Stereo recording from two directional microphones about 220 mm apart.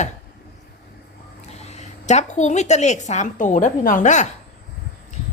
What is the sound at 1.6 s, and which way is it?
A woman's voice, 30° left (ahead or behind).